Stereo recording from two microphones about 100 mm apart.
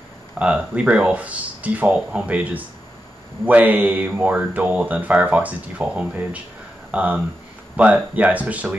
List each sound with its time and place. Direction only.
0.4 s speech: 10° right (ahead or behind)